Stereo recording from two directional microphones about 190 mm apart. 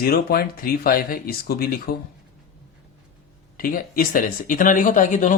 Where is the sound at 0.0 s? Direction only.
50° left (ahead or behind).